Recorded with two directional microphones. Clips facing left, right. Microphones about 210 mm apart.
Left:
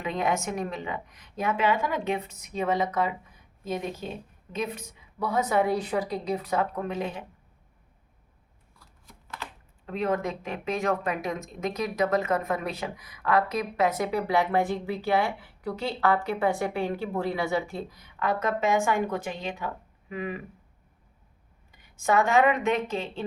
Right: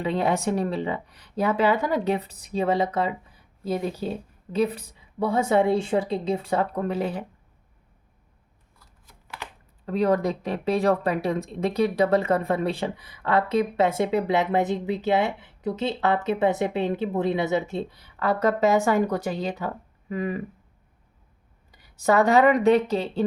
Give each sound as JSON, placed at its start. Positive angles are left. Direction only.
{"t": 0.0, "sound": "speech", "side_deg": -30}
{"t": 9.2, "sound": "shuffling cards", "side_deg": -15}
{"t": 9.8, "sound": "speech", "side_deg": -35}
{"t": 21.7, "sound": "speech", "side_deg": -35}